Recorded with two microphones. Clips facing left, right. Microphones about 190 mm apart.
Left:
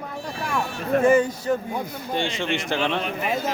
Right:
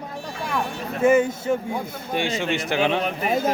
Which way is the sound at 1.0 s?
10° right (ahead or behind).